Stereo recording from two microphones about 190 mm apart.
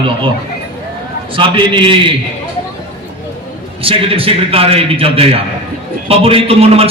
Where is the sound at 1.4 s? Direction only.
25° right (ahead or behind).